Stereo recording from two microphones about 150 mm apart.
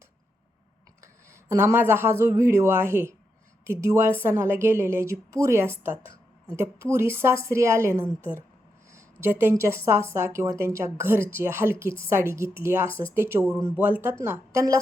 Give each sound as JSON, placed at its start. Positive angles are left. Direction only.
{"t": 1.0, "sound": "a woman's voice", "side_deg": -20}